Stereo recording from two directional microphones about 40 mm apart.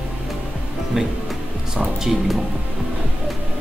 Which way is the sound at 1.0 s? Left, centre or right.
Centre.